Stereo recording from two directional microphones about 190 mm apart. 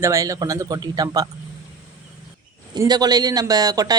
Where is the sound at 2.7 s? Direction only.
20° right (ahead or behind).